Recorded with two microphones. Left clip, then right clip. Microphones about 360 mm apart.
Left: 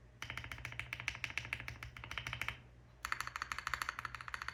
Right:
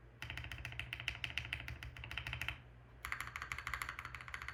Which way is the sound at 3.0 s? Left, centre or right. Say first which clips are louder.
Left 3 dB; centre.